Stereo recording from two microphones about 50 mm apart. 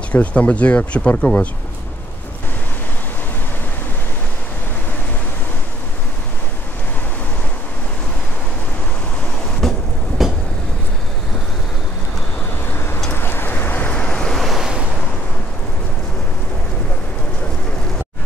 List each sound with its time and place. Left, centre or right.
0.1 s speech: left
9.6 s a sound: centre
10.2 s vehicle: centre
12.6 s vehicle: left
13.9 s waves: centre
14.3 s waves: centre